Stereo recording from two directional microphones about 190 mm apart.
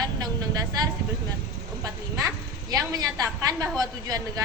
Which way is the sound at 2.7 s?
20° right (ahead or behind).